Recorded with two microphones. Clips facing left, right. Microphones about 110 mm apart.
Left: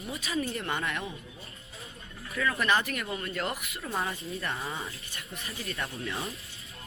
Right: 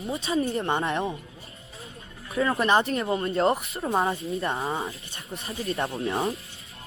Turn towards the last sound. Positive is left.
turn(degrees=-35)  # may be behind; listen again after turning